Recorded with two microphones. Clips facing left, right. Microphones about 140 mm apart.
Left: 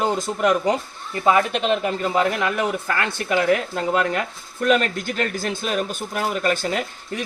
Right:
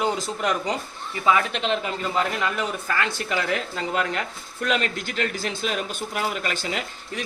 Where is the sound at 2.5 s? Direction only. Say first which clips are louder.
Left 3 dB; 50° left (ahead or behind).